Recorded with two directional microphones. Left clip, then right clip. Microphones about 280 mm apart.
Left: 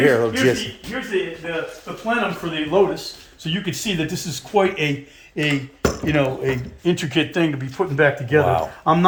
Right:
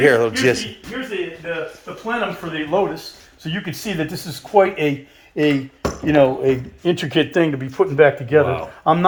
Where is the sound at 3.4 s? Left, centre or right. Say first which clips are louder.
Left 2 dB; centre.